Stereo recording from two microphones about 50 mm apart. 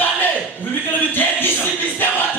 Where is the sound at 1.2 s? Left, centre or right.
Left.